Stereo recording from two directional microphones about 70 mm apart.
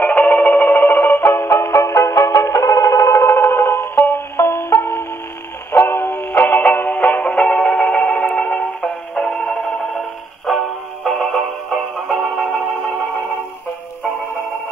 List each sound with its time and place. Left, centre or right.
0.0 s music: left
10.5 s music: centre